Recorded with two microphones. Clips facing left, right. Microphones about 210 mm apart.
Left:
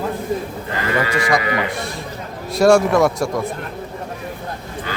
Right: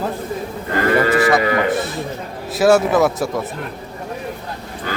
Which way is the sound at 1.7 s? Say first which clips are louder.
Right 6 dB; centre (ahead or behind).